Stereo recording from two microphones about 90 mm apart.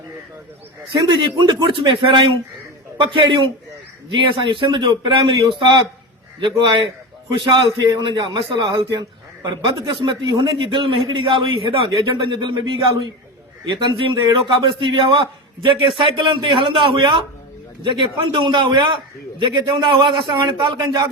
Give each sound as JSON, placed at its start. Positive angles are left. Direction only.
{"t": 0.9, "sound": "a man's voice", "side_deg": -60}
{"t": 7.3, "sound": "a man's voice", "side_deg": -65}